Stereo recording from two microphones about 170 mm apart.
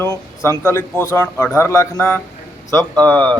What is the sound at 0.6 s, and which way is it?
A man's voice, 15° left (ahead or behind).